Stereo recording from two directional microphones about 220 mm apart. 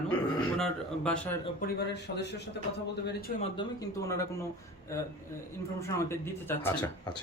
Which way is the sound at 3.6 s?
15° left (ahead or behind).